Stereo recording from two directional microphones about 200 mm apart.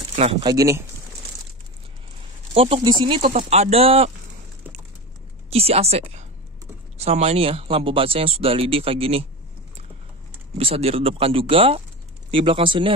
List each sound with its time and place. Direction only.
0.1 s speech: 30° right (ahead or behind)
2.5 s speech: 30° right (ahead or behind)
3.3 s speech: 35° right (ahead or behind)
5.5 s speech: 30° right (ahead or behind)
10.6 s speech: 30° right (ahead or behind)